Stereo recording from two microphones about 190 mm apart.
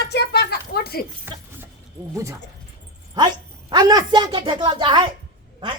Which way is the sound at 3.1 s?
20° right (ahead or behind).